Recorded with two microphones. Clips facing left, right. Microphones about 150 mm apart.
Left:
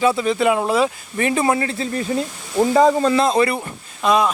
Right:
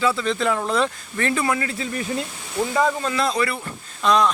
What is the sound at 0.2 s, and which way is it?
Speech, 10° left (ahead or behind).